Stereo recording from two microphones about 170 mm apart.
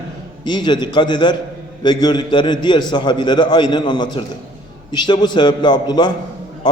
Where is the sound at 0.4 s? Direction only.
25° left (ahead or behind).